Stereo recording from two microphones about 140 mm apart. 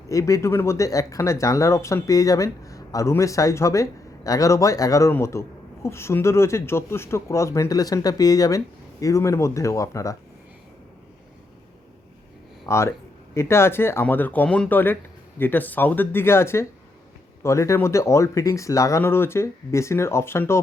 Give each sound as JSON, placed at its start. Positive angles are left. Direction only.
{"t": 0.1, "sound": "speech", "side_deg": 25}
{"t": 12.6, "sound": "speech", "side_deg": 20}